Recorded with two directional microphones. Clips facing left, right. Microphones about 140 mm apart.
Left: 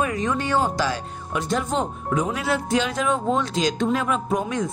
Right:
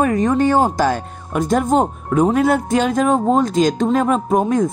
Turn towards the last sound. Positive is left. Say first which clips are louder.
# right 8 dB
turn(degrees=-45)  # may be behind; listen again after turning